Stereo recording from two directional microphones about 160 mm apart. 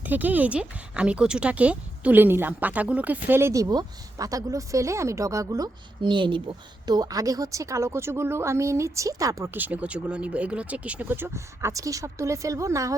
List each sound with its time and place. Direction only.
0.0 s speech: 10° right (ahead or behind)